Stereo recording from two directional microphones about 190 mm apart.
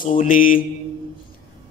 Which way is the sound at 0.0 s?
45° left (ahead or behind).